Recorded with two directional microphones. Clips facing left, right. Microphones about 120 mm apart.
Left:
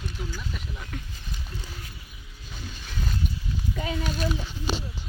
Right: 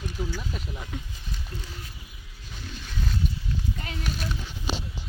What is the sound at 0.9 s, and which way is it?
Speech, 20° right (ahead or behind).